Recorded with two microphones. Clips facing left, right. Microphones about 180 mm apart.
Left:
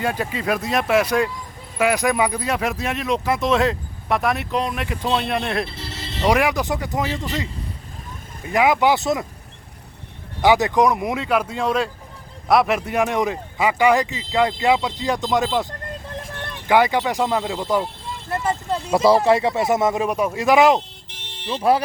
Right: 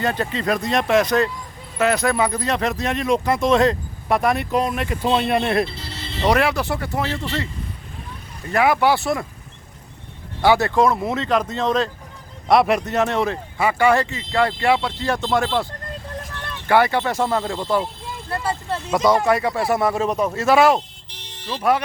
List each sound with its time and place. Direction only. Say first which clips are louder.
0.0 s speech: right 1 dB; 10° left (ahead or behind)
6.2 s speech: even; 15° left (ahead or behind)
8.4 s speech: even; 15° left (ahead or behind)
10.4 s speech: even; 15° left (ahead or behind)
21.2 s music: left 2 dB; 25° left (ahead or behind)